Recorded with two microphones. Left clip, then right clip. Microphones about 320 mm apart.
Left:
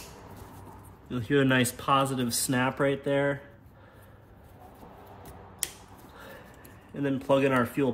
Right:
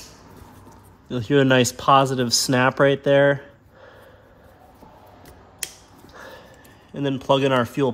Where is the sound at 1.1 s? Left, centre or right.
Centre.